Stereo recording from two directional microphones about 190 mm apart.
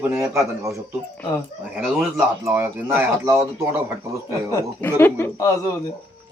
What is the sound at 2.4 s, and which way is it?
Speech, 15° right (ahead or behind).